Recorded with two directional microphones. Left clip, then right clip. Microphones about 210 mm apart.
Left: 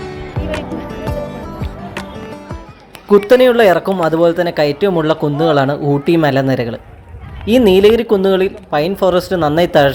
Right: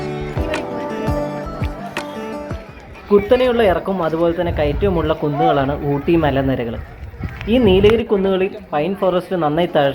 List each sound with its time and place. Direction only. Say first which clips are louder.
3.1 s speech: left 5 dB; 50° left (ahead or behind)